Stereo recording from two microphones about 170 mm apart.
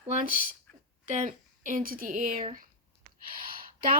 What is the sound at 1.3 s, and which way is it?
Speech, 50° right (ahead or behind).